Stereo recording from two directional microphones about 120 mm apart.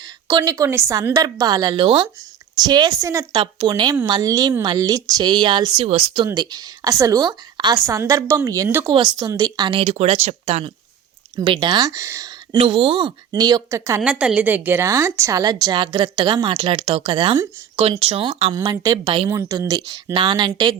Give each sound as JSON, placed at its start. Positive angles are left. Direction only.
{"t": 0.3, "sound": "a woman's voice", "side_deg": -35}
{"t": 1.7, "sound": "a woman's voice", "side_deg": -45}
{"t": 5.8, "sound": "speech", "side_deg": -55}
{"t": 6.2, "sound": "a woman's voice", "side_deg": -35}
{"t": 7.8, "sound": "a woman's voice", "side_deg": -25}
{"t": 8.9, "sound": "a woman's voice", "side_deg": -35}
{"t": 9.9, "sound": "speech", "side_deg": -65}
{"t": 11.3, "sound": "a woman's voice", "side_deg": -40}
{"t": 12.5, "sound": "a woman's voice", "side_deg": -50}
{"t": 14.0, "sound": "a woman's voice", "side_deg": -10}
{"t": 18.5, "sound": "a woman's voice", "side_deg": -30}